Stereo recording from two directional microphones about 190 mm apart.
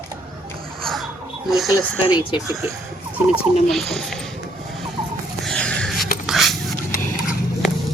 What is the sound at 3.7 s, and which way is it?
Speech, centre (ahead or behind).